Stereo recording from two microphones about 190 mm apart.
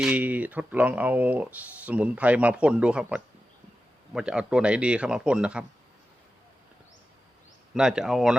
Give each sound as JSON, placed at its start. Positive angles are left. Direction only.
{"t": 0.0, "sound": "a man's voice", "side_deg": -5}
{"t": 7.7, "sound": "a man's voice", "side_deg": -5}